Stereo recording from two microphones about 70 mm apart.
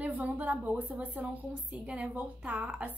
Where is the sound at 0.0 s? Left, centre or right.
Right.